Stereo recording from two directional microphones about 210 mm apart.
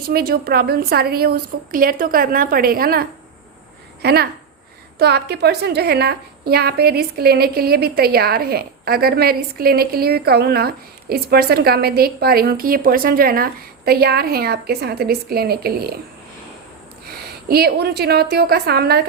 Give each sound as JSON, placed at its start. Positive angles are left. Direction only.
{"t": 0.1, "sound": "a woman's voice", "side_deg": -45}
{"t": 17.2, "sound": "a woman's voice", "side_deg": -50}